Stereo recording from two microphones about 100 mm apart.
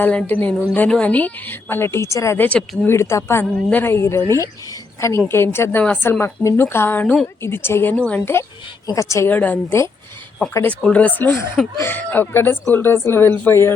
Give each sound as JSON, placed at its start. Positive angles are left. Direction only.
{"t": 0.0, "sound": "speech", "side_deg": 15}
{"t": 2.4, "sound": "speech", "side_deg": 15}
{"t": 2.9, "sound": "speech", "side_deg": 30}
{"t": 3.5, "sound": "a woman's voice", "side_deg": 15}
{"t": 9.3, "sound": "speech", "side_deg": 15}